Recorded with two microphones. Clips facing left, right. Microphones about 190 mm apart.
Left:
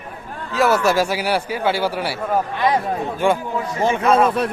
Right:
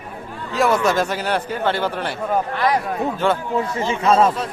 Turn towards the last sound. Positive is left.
turn(degrees=60)  # may be behind; listen again after turning